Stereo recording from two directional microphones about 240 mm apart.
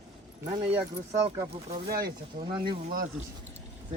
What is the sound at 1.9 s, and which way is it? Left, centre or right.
Speech, right.